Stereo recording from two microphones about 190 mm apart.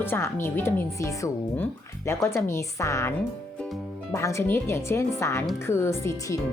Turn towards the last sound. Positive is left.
turn(degrees=15)  # may be behind; listen again after turning